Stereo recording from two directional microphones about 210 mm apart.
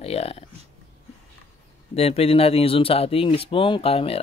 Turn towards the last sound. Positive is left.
turn(degrees=30)  # may be behind; listen again after turning